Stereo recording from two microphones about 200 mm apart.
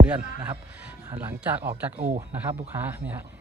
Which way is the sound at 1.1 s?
10° right (ahead or behind).